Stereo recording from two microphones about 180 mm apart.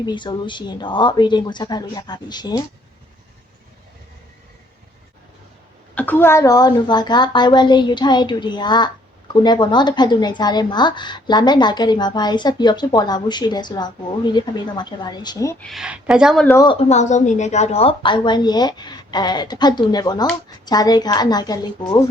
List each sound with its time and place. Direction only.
0.0 s a woman's voice: 25° left (ahead or behind)
5.9 s a woman's voice: 10° left (ahead or behind)
15.6 s speech: centre (ahead or behind)
16.5 s a woman's voice: 20° left (ahead or behind)
16.9 s a woman's voice: 40° left (ahead or behind); by 22.0 s 20° left (ahead or behind)